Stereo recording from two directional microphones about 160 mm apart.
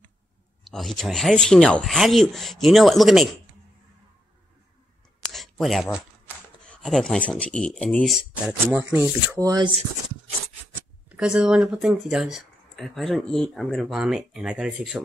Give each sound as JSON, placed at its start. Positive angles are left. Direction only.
{"t": 0.7, "sound": "speech", "side_deg": 0}
{"t": 5.3, "sound": "a sound", "side_deg": 0}
{"t": 6.7, "sound": "speech", "side_deg": 5}
{"t": 11.1, "sound": "speech", "side_deg": -5}